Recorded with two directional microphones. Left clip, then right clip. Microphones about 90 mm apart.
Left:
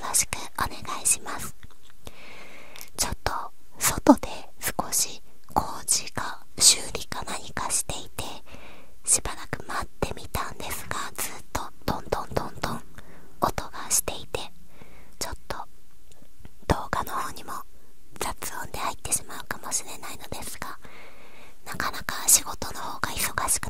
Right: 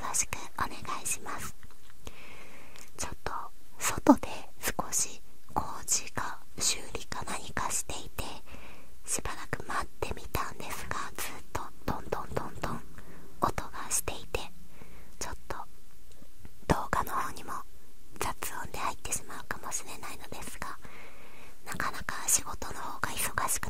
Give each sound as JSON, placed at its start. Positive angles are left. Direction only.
{"t": 0.0, "sound": "whispering", "side_deg": 15}
{"t": 16.6, "sound": "whispering", "side_deg": 10}